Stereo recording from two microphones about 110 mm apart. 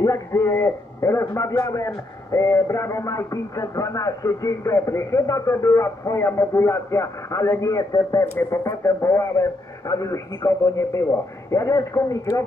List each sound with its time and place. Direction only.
0.0 s speech: 30° left (ahead or behind)